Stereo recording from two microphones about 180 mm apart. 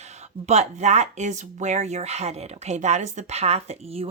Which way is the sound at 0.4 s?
35° right (ahead or behind).